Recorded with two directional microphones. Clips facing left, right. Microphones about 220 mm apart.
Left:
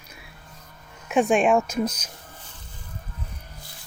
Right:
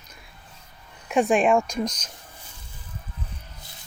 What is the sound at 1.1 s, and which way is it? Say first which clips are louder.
Speech: even; centre (ahead or behind).